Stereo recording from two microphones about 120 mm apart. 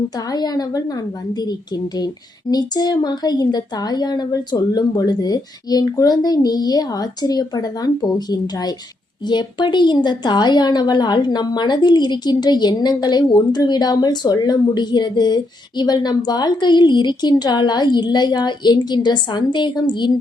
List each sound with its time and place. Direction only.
0.3 s a woman's voice: 35° left (ahead or behind)